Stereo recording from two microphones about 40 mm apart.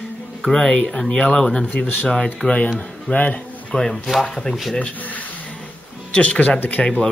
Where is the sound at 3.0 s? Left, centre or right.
Left.